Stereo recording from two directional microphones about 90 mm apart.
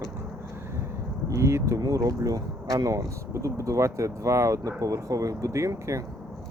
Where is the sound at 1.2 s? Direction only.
35° right (ahead or behind).